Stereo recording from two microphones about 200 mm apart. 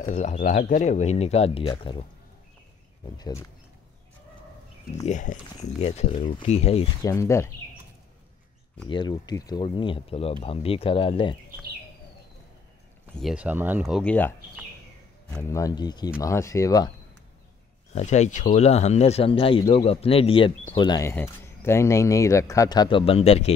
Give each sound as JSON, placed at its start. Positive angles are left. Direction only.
{"t": 0.0, "sound": "speech", "side_deg": 35}
{"t": 3.2, "sound": "speech", "side_deg": 20}
{"t": 5.0, "sound": "speech", "side_deg": 40}
{"t": 7.0, "sound": "speech", "side_deg": 15}
{"t": 8.8, "sound": "speech", "side_deg": 25}
{"t": 13.2, "sound": "speech", "side_deg": -5}
{"t": 15.3, "sound": "speech", "side_deg": 15}
{"t": 17.9, "sound": "speech", "side_deg": 35}